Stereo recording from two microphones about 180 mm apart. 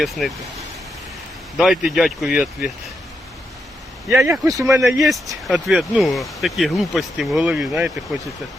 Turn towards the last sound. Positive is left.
turn(degrees=-5)  # may be behind; listen again after turning